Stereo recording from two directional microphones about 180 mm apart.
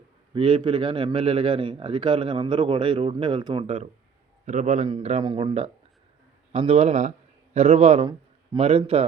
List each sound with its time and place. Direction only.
0.3 s a man's voice: 30° right (ahead or behind)